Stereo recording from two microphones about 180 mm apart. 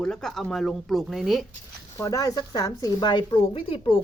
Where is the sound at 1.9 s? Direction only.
15° left (ahead or behind).